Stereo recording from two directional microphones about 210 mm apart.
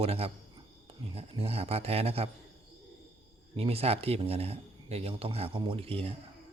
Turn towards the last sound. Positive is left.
turn(degrees=-25)  # may be behind; listen again after turning